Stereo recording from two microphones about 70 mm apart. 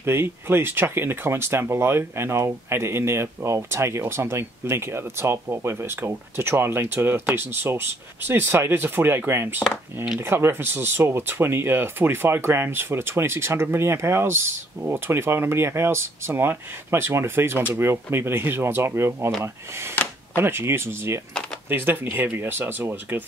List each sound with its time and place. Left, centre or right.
0.0 s speech: right
20.3 s speech: right